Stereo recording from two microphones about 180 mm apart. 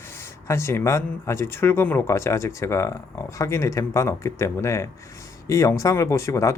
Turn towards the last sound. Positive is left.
turn(degrees=15)  # may be behind; listen again after turning